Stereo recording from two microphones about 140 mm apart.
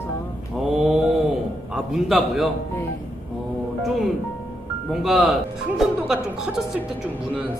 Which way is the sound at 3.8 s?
Centre (ahead or behind).